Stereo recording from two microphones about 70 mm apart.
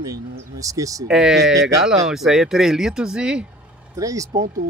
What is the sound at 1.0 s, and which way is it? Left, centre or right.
Speech, centre.